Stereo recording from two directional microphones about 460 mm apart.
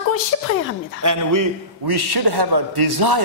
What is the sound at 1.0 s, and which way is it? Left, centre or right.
A man's voice, right.